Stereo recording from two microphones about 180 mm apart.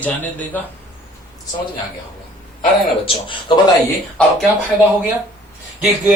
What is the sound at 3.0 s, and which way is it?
Speech, 25° left (ahead or behind).